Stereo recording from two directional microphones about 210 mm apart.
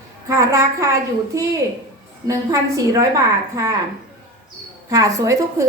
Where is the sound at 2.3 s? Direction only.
15° right (ahead or behind).